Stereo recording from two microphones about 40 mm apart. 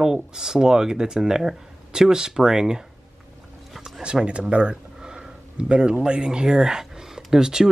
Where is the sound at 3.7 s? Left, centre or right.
Centre.